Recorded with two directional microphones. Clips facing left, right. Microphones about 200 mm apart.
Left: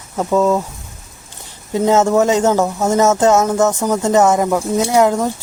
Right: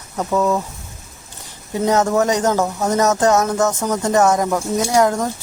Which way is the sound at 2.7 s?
20° left (ahead or behind).